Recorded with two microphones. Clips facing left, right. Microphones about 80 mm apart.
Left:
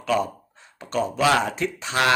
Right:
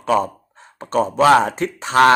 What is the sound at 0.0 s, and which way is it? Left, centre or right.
Speech, right.